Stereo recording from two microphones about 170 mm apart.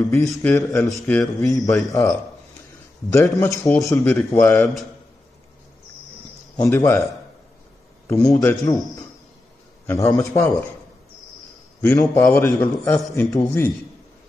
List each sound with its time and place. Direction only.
0.1 s a man's voice: 15° left (ahead or behind)
6.5 s a man's voice: 15° left (ahead or behind)
8.3 s a man's voice: 20° left (ahead or behind)
11.8 s a man's voice: 10° left (ahead or behind)